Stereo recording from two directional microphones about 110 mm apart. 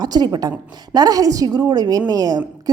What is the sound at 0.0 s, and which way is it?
A woman's voice, 35° right (ahead or behind).